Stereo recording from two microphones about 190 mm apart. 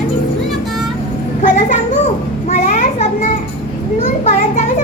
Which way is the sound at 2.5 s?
40° left (ahead or behind).